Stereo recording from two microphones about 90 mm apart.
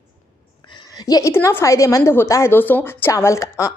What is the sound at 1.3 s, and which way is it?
A woman's voice, 30° left (ahead or behind).